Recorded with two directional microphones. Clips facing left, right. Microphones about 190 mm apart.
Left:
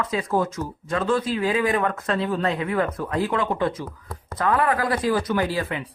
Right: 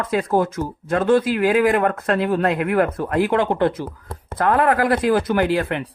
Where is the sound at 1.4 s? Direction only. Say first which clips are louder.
Right 5 dB; 90° right.